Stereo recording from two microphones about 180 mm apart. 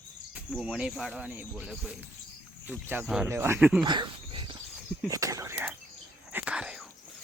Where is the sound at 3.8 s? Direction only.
25° right (ahead or behind).